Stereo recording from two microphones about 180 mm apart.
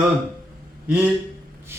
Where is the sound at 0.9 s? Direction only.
10° right (ahead or behind).